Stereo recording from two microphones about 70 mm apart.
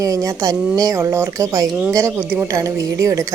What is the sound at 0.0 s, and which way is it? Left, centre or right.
Speech, right.